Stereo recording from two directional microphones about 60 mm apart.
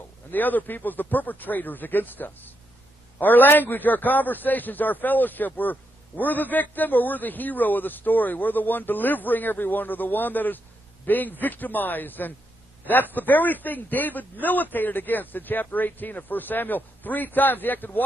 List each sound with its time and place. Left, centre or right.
0.3 s a man's voice: left